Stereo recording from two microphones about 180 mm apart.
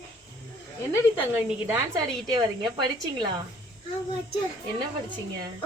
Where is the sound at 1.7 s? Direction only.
15° right (ahead or behind).